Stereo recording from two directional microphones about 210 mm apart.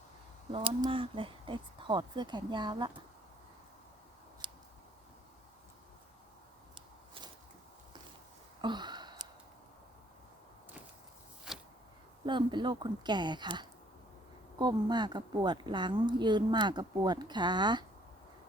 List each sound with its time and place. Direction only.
0.5 s a woman's voice: 25° right (ahead or behind)
4.4 s scissors: 25° right (ahead or behind)
8.6 s a sound: 20° right (ahead or behind)
12.2 s a woman's voice: 20° right (ahead or behind)